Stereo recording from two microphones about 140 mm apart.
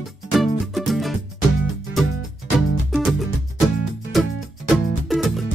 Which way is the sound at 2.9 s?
Centre (ahead or behind).